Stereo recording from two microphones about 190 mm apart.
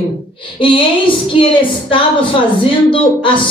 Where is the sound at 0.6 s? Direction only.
25° left (ahead or behind).